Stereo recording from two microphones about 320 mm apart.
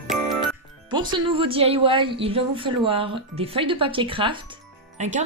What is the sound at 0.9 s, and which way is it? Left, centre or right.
Speech, centre.